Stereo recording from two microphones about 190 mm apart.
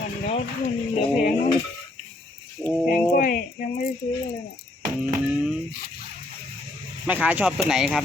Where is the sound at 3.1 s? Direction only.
50° left (ahead or behind).